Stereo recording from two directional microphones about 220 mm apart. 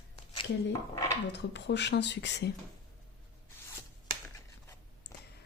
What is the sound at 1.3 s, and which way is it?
Speech, 50° left (ahead or behind).